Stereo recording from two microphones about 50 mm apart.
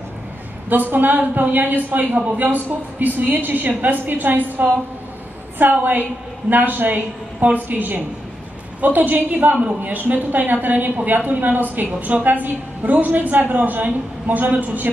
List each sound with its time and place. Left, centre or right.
0.7 s a woman's voice: right
2.0 s a man's voice: right
2.3 s a woman's voice: right